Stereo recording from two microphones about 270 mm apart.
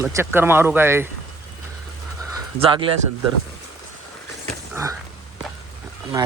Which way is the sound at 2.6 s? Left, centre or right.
Centre.